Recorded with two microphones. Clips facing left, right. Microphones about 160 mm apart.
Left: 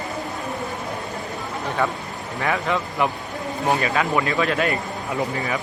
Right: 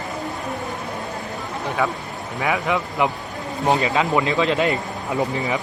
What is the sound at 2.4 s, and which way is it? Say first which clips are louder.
A man's voice: right 1 dB; 15° right (ahead or behind).